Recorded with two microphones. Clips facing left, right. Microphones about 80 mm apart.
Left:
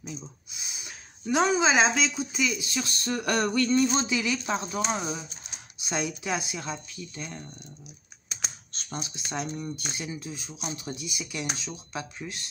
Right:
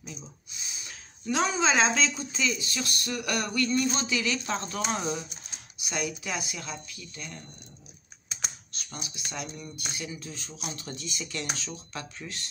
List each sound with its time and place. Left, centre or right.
0.0 s speech: centre
5.8 s speech: left
8.7 s speech: left
10.3 s speech: centre